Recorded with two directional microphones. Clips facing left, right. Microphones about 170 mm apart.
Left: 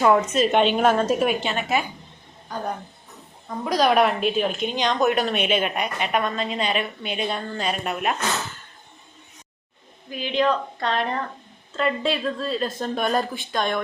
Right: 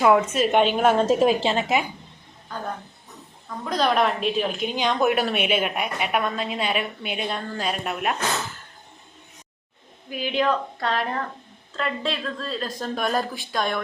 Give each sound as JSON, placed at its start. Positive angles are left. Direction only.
{"t": 0.0, "sound": "a woman's voice", "side_deg": -5}
{"t": 0.9, "sound": "a woman's voice", "side_deg": -25}
{"t": 3.6, "sound": "a woman's voice", "side_deg": 10}
{"t": 10.1, "sound": "a woman's voice", "side_deg": -5}